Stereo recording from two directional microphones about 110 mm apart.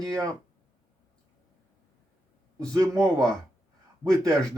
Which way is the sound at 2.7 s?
30° right (ahead or behind).